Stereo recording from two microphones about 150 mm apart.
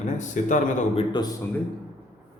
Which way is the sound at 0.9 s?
30° left (ahead or behind).